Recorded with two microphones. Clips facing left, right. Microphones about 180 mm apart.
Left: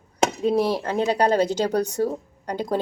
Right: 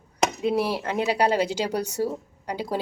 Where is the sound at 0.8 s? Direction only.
35° left (ahead or behind).